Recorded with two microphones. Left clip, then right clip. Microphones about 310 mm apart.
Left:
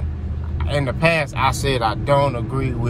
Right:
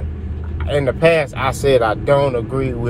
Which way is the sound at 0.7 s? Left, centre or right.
Centre.